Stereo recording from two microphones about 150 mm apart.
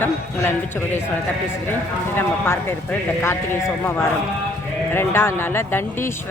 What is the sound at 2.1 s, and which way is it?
Speech, 15° left (ahead or behind).